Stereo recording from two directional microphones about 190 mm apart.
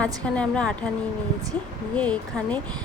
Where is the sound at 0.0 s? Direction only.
5° left (ahead or behind).